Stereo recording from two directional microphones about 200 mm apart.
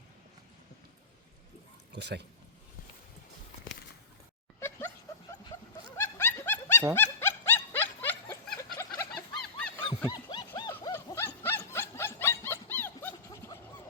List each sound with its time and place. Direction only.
1.9 s speech: 60° right (ahead or behind)
6.0 s dog: 15° left (ahead or behind)
9.4 s a sound: 5° left (ahead or behind)
9.8 s wild animals: 20° left (ahead or behind)
11.4 s dog: 10° left (ahead or behind)